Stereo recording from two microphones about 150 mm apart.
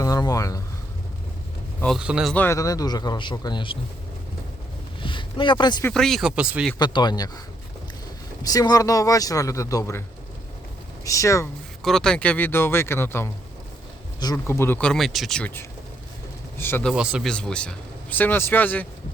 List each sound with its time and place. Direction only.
0.0 s a sound: 25° left (ahead or behind)
2.0 s speech: 5° right (ahead or behind)
2.3 s speech: 15° left (ahead or behind); by 3.8 s 30° left (ahead or behind)
5.0 s a sound: 35° left (ahead or behind)
5.9 s speech: 5° left (ahead or behind)
6.7 s speech: 30° left (ahead or behind)
8.4 s speech: 25° left (ahead or behind)
11.0 s speech: 20° left (ahead or behind)
11.8 s speech: centre (ahead or behind)
14.3 s speech: 15° left (ahead or behind)
16.9 s speech: 5° right (ahead or behind)
17.3 s speech: 5° left (ahead or behind)